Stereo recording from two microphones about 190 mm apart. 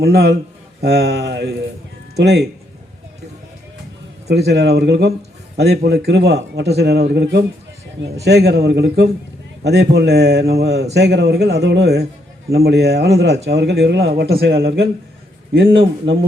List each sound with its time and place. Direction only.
0.0 s speech: 60° right (ahead or behind)
4.3 s speech: 60° right (ahead or behind)
15.5 s speech: 70° right (ahead or behind)